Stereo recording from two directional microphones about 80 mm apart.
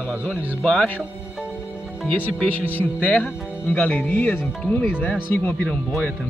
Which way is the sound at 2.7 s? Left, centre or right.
Centre.